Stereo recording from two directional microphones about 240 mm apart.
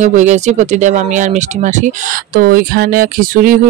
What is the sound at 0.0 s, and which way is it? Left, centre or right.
Speech, right.